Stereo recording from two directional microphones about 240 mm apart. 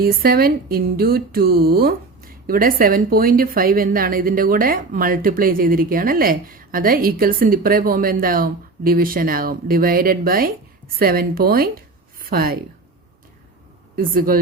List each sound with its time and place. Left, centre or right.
0.0 s a woman's voice: right
13.9 s speech: right